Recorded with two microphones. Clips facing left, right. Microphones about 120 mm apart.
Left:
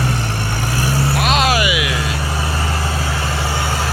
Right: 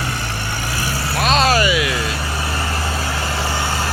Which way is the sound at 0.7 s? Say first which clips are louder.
Left 5 dB; 45° left (ahead or behind).